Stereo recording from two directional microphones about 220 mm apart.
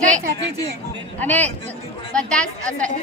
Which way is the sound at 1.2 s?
5° left (ahead or behind).